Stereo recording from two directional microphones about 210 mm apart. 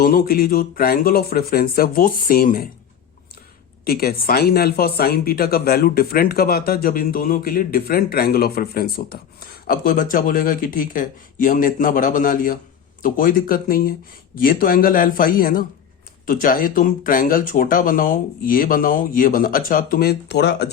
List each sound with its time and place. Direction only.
0.0 s speech: 45° left (ahead or behind)
3.8 s speech: 45° left (ahead or behind)